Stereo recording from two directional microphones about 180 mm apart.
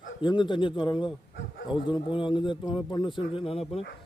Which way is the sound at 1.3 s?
65° left (ahead or behind).